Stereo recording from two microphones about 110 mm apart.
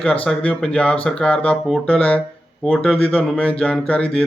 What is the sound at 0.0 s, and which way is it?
Speech, 10° left (ahead or behind).